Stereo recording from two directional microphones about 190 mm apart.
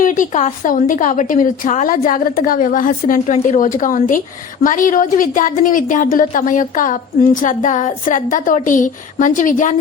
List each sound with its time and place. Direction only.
0.0 s a woman's voice: 45° left (ahead or behind)